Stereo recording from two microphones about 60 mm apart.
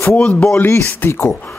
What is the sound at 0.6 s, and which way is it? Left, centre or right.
Speech, left.